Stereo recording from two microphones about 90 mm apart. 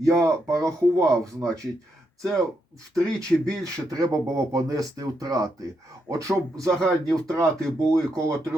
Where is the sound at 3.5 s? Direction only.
40° right (ahead or behind).